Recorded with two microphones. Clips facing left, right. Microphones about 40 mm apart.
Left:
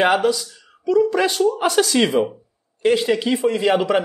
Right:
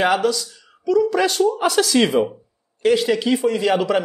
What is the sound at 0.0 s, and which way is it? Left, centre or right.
A man's voice, left.